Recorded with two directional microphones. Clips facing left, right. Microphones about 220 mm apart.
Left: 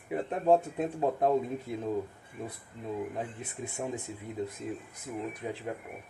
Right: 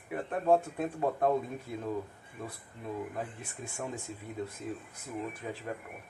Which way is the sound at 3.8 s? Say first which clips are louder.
Left 3 dB; 15° left (ahead or behind).